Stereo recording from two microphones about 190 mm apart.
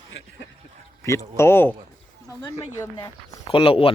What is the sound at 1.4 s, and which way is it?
Speech, 10° left (ahead or behind).